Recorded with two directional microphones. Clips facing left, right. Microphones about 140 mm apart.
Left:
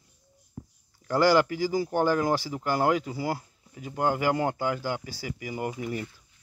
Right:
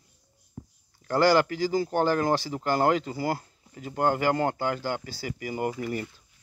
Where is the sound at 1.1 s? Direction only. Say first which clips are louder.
Even; 15° left (ahead or behind).